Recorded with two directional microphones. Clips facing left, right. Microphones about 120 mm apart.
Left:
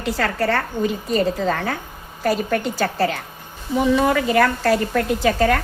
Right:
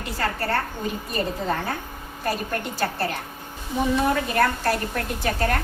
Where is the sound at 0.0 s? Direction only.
90° left.